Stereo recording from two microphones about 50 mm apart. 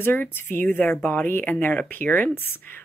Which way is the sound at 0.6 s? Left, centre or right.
Left.